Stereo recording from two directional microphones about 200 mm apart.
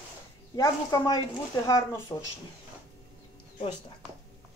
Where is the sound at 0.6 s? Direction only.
15° left (ahead or behind).